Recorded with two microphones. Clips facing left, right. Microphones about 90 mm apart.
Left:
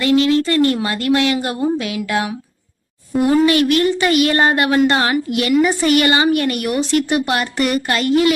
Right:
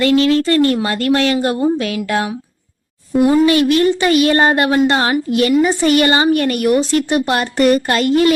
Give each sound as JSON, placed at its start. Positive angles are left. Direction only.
{"t": 0.0, "sound": "speech", "side_deg": 25}
{"t": 0.4, "sound": "speech", "side_deg": -35}